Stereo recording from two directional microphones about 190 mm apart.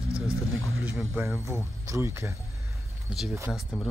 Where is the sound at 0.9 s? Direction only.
10° right (ahead or behind).